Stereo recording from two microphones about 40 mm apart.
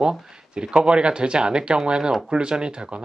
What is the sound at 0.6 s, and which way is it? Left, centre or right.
Speech, right.